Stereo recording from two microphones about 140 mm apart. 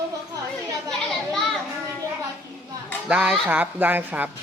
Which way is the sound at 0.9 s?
5° left (ahead or behind).